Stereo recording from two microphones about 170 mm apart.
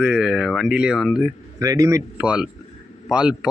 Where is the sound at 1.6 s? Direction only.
20° right (ahead or behind).